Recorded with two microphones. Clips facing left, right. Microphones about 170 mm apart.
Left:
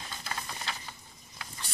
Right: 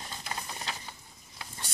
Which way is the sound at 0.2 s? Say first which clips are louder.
Even; 15° right (ahead or behind).